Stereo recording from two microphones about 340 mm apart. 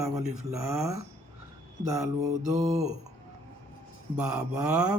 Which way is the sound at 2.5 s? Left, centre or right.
Centre.